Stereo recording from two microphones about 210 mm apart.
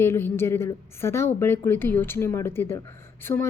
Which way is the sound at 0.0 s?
10° left (ahead or behind).